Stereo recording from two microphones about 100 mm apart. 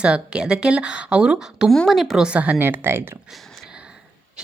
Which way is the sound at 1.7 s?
Centre (ahead or behind).